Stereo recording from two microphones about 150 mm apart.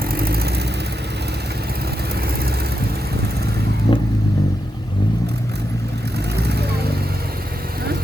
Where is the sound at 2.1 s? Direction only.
90° right.